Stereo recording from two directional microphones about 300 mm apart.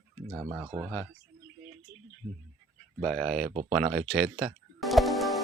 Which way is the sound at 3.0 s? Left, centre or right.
Centre.